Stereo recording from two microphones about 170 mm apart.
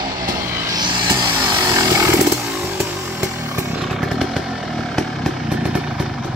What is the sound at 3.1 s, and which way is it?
Chainsaw, 15° right (ahead or behind).